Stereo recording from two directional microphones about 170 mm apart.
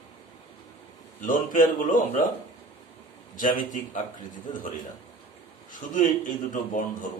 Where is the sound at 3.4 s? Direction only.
50° left (ahead or behind).